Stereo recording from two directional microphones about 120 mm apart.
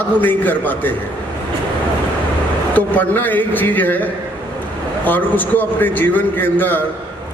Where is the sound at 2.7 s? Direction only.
15° left (ahead or behind).